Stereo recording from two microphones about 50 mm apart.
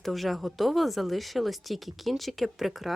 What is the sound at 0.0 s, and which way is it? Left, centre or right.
Speech, centre.